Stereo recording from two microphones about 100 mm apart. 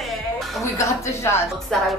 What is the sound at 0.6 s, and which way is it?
Speech, 30° left (ahead or behind).